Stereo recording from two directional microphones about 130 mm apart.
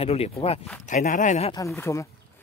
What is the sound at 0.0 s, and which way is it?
Speech, 50° left (ahead or behind).